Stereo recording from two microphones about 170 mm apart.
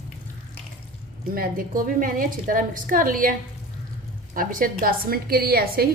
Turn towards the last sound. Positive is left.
turn(degrees=-65)  # may be behind; listen again after turning